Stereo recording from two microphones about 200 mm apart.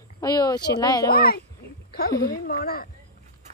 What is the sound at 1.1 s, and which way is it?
Speech, 50° left (ahead or behind).